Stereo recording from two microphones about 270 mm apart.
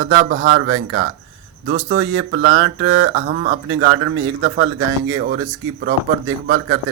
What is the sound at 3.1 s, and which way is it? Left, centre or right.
Speech, right.